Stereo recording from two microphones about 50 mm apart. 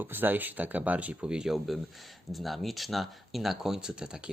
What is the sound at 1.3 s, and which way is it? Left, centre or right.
Speech, centre.